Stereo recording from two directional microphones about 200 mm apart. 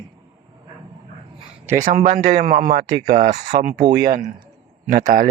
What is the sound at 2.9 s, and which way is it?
Speech, 20° right (ahead or behind).